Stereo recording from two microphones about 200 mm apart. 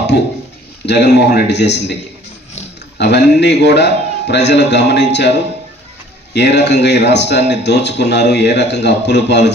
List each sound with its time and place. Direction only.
0.8 s speech: 55° left (ahead or behind)
3.0 s speech: 55° left (ahead or behind)